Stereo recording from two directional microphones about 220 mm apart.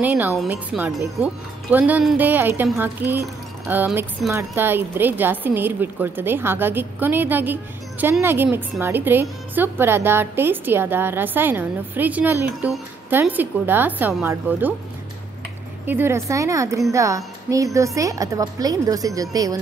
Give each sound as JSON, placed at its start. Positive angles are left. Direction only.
{"t": 0.0, "sound": "speech", "side_deg": -5}
{"t": 15.9, "sound": "speech", "side_deg": -10}